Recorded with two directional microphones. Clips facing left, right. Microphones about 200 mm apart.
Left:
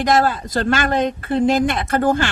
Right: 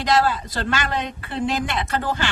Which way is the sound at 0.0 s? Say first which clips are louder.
Left 3 dB; 50° left (ahead or behind).